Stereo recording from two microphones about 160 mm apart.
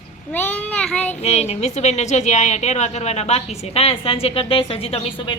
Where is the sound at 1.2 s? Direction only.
40° left (ahead or behind).